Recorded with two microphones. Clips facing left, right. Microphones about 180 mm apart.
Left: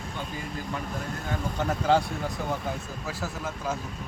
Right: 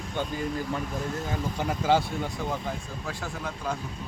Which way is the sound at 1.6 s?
5° right (ahead or behind).